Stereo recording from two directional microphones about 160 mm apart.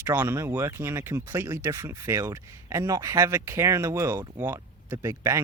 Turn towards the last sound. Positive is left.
turn(degrees=-20)  # may be behind; listen again after turning